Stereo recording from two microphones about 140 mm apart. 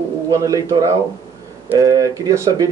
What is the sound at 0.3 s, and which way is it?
A man's voice, 25° right (ahead or behind).